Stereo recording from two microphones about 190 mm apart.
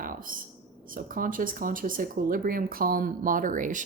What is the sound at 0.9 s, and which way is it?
Speech, 45° right (ahead or behind).